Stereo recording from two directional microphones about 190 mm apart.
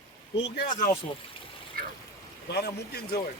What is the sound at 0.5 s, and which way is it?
Speech, 50° left (ahead or behind).